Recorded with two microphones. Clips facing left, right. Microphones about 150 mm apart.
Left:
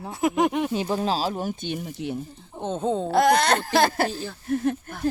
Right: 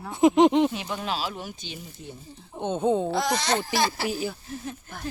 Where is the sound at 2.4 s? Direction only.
Centre (ahead or behind).